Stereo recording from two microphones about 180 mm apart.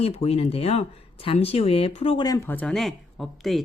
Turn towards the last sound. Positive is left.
turn(degrees=0)  # may be behind; listen again after turning